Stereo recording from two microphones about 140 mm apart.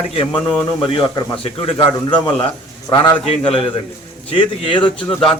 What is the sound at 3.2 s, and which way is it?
A man's voice, 45° left (ahead or behind).